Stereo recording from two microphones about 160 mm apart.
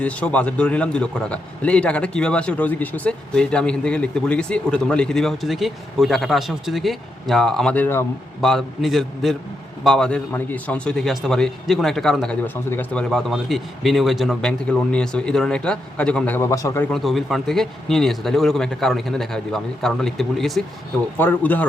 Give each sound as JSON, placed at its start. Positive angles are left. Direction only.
{"t": 0.0, "sound": "a man's voice", "side_deg": 10}
{"t": 8.4, "sound": "a man's voice", "side_deg": 0}
{"t": 16.9, "sound": "a man's voice", "side_deg": 0}
{"t": 21.2, "sound": "a man's voice", "side_deg": 10}